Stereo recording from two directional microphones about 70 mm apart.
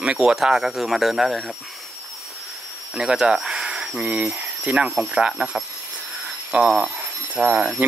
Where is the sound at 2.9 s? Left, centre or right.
Centre.